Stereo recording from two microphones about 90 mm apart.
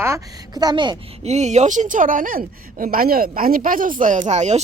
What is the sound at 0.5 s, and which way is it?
Speech, 50° right (ahead or behind).